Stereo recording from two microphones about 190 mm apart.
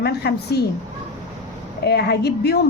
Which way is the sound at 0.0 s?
55° left (ahead or behind).